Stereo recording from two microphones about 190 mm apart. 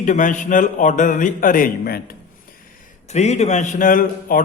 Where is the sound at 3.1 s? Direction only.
35° left (ahead or behind).